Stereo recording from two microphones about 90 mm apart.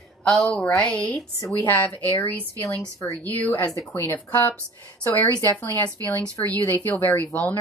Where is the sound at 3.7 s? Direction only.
30° left (ahead or behind).